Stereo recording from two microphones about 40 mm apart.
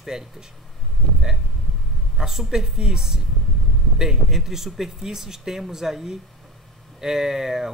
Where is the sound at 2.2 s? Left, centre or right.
Centre.